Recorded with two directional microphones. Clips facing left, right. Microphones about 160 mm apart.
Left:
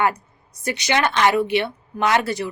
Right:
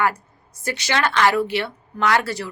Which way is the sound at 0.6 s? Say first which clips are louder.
Left 2 dB; 20° left (ahead or behind).